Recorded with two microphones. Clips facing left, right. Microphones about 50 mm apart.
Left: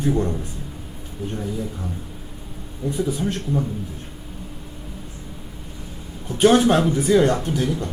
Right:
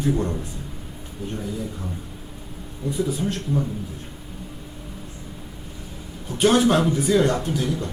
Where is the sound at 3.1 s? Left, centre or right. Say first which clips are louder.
Left 1 dB; left.